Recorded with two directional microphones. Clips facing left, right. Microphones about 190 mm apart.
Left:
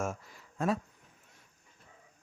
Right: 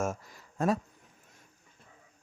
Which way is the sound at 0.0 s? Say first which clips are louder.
Right 3 dB; 45° right (ahead or behind).